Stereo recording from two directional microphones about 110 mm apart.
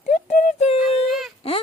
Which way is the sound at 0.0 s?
90° left.